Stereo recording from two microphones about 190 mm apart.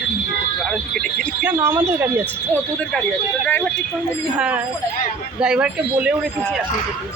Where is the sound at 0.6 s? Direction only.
5° left (ahead or behind).